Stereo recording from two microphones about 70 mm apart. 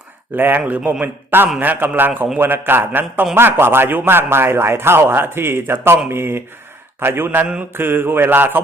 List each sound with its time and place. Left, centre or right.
0.3 s a man's voice: right
0.6 s a man's voice: centre
1.0 s a man's voice: right